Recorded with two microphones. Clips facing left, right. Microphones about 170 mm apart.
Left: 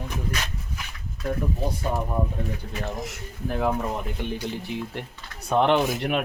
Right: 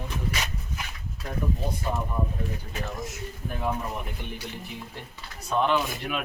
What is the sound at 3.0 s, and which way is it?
Speech, 75° left (ahead or behind).